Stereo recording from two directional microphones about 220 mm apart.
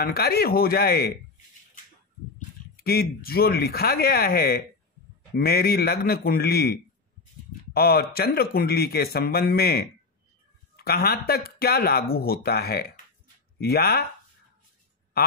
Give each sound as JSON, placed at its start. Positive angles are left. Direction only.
{"t": 0.0, "sound": "speech", "side_deg": 45}
{"t": 2.3, "sound": "speech", "side_deg": 45}